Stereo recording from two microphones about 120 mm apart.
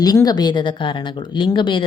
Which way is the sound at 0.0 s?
35° left (ahead or behind).